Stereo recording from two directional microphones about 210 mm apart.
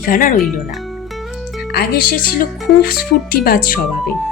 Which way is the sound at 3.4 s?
45° left (ahead or behind).